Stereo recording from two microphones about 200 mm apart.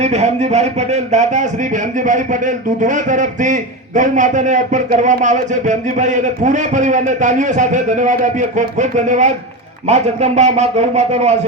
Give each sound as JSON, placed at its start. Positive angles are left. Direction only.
{"t": 0.0, "sound": "speech", "side_deg": -35}